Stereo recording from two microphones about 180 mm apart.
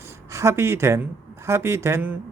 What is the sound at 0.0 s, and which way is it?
Speech, 15° right (ahead or behind).